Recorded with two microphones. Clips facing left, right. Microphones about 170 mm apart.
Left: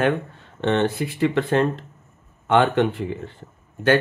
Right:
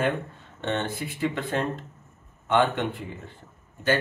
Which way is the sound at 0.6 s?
85° left.